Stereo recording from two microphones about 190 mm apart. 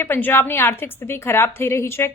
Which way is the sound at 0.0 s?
10° left (ahead or behind).